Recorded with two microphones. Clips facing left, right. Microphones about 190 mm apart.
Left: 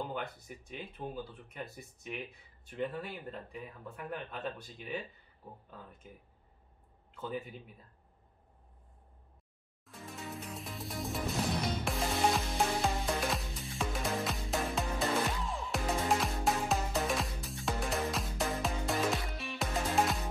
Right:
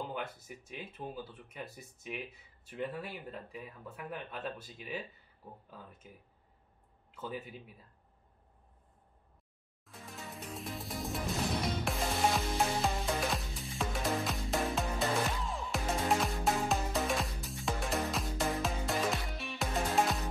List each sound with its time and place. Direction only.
0.0 s speech: centre (ahead or behind)
7.1 s speech: 5° right (ahead or behind)
9.8 s music: centre (ahead or behind)